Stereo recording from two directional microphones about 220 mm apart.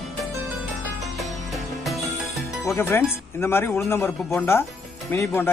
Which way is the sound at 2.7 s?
10° left (ahead or behind).